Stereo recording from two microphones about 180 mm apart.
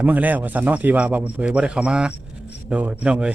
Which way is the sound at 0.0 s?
10° right (ahead or behind).